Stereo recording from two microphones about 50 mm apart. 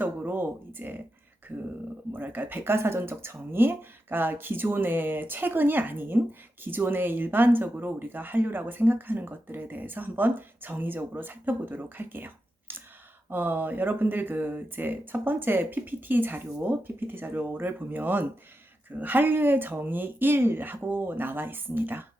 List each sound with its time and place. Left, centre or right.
0.3 s speech: right
2.1 s speech: right